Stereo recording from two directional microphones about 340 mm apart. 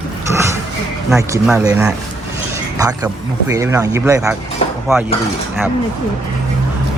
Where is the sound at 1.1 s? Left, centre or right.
Centre.